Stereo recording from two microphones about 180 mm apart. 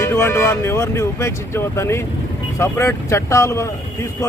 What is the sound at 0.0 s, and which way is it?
Speech, 15° left (ahead or behind).